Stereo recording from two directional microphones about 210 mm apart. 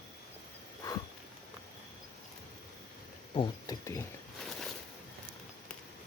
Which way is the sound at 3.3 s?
25° left (ahead or behind).